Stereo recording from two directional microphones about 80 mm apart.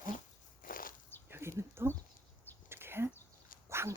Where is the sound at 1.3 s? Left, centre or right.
Right.